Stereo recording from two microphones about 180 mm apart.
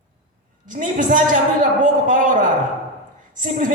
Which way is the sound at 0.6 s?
50° right (ahead or behind).